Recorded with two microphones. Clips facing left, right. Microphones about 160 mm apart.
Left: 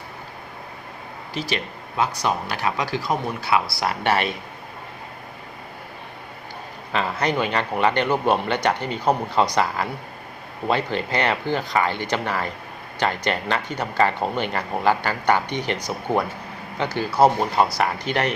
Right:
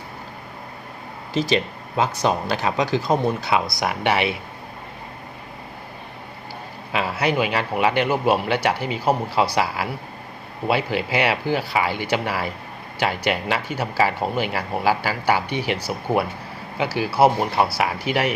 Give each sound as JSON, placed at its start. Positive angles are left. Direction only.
{"t": 1.3, "sound": "speech", "side_deg": -25}
{"t": 6.9, "sound": "speech", "side_deg": -10}